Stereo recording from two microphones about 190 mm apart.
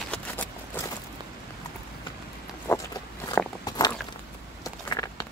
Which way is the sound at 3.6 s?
20° left (ahead or behind).